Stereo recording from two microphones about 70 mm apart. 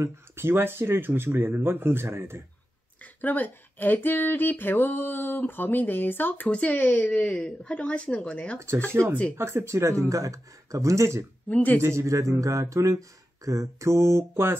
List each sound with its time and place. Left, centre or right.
0.0 s speech: right
3.0 s speech: left
6.4 s speech: centre
8.5 s speech: right
11.4 s speech: left
11.8 s speech: right